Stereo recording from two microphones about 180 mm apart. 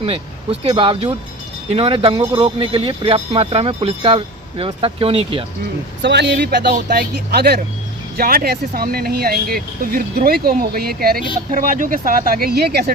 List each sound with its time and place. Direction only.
0.6 s speech: 30° right (ahead or behind)
6.0 s speech: 70° right (ahead or behind)